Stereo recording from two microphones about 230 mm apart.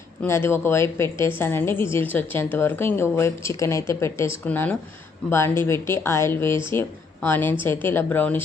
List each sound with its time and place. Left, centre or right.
0.2 s a woman's voice: centre